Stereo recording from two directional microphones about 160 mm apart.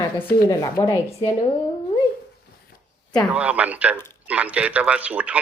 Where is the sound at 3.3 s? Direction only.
10° right (ahead or behind).